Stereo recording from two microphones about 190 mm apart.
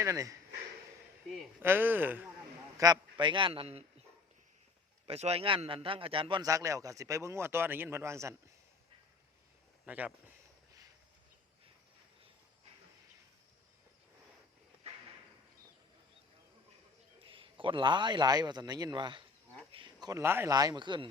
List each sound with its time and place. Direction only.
0.0 s a man's voice: 15° right (ahead or behind)
1.6 s a man's voice: 10° right (ahead or behind)
2.7 s a man's voice: 20° right (ahead or behind)
5.0 s a man's voice: 30° right (ahead or behind); by 8.5 s 15° right (ahead or behind)
9.8 s speech: 10° right (ahead or behind)
17.2 s a man's voice: 25° right (ahead or behind)